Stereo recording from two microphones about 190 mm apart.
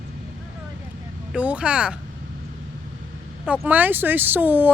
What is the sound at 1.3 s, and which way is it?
Speech, 5° right (ahead or behind).